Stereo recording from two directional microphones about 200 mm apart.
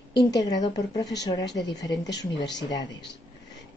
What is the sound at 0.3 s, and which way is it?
Speech, 20° left (ahead or behind).